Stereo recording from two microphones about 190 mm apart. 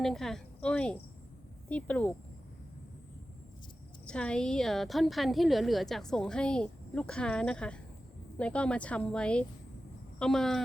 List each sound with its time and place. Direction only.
0.0 s speech: centre (ahead or behind)
4.0 s a woman's voice: 5° left (ahead or behind)